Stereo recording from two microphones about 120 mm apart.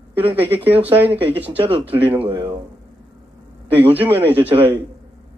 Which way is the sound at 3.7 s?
15° right (ahead or behind).